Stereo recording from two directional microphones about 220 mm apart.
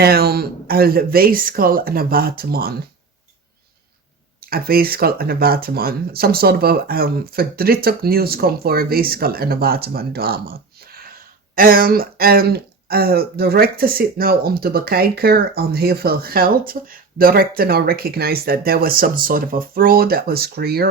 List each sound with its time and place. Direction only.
0.0 s speech: 45° right (ahead or behind)
4.4 s speech: 45° right (ahead or behind)